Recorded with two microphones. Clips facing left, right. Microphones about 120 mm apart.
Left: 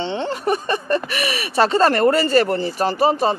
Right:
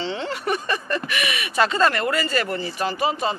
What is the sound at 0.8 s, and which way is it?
Speech, 35° left (ahead or behind).